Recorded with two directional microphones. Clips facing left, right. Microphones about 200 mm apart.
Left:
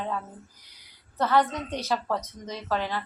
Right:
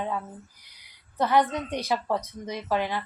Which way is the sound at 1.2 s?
15° right (ahead or behind).